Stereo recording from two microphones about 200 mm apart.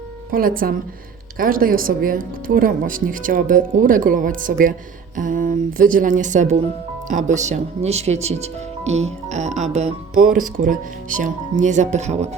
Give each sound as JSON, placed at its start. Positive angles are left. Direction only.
{"t": 0.3, "sound": "speech", "side_deg": -45}